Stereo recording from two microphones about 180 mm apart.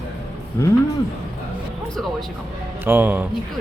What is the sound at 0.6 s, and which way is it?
Speech, 15° left (ahead or behind).